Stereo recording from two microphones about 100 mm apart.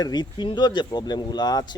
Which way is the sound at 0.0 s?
45° left (ahead or behind).